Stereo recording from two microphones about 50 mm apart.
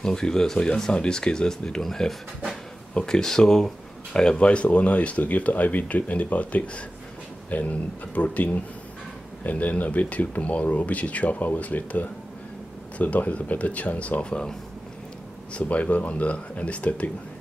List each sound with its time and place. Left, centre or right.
0.0 s speech: centre
15.5 s speech: left